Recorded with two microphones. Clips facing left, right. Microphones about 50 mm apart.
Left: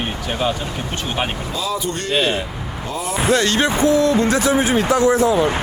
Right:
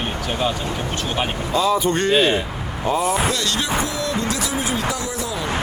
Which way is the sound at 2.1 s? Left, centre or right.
Centre.